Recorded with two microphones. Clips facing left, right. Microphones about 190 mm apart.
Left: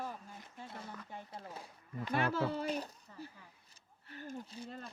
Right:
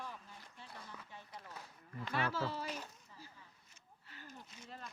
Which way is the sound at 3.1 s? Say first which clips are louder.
Left 8 dB; 60° left (ahead or behind).